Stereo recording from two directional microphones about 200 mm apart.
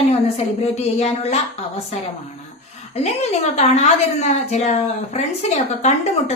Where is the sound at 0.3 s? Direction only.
35° left (ahead or behind).